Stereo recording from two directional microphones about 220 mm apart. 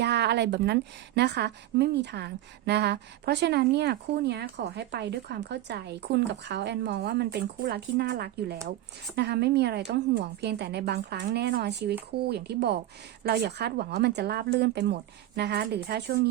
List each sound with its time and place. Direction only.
0.0 s speech: 50° right (ahead or behind)